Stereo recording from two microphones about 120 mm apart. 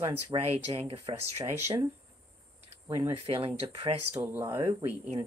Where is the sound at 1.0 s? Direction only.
25° right (ahead or behind).